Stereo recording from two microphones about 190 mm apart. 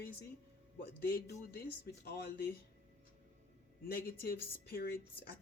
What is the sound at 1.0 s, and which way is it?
Speech, 55° left (ahead or behind).